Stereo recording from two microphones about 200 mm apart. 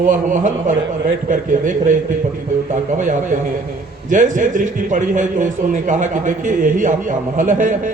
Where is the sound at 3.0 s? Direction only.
40° right (ahead or behind).